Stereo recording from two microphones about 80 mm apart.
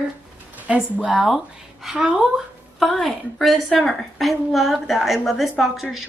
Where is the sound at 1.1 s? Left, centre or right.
Centre.